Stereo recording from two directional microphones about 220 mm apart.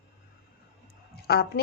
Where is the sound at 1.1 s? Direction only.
45° left (ahead or behind).